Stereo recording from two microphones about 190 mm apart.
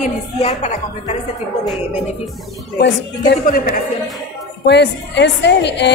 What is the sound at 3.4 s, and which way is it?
Speech, 50° left (ahead or behind).